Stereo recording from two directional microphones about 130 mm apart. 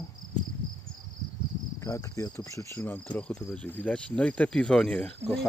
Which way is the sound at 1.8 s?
25° left (ahead or behind).